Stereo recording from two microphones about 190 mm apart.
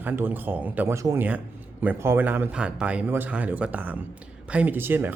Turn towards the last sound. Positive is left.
turn(degrees=-10)  # may be behind; listen again after turning